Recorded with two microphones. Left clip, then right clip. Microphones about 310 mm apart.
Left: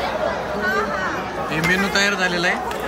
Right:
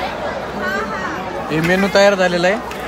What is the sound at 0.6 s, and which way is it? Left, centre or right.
Chatter, left.